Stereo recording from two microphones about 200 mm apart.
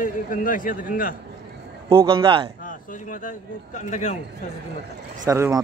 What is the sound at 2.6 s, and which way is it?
A man's voice, 40° left (ahead or behind).